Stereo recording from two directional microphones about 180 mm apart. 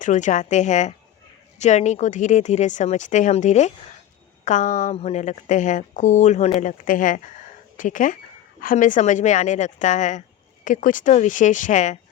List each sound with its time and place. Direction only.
0.0 s a woman's voice: 45° left (ahead or behind)